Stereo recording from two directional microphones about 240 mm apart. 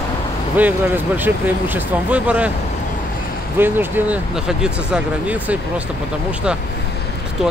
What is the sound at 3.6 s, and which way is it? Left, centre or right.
Speech, centre.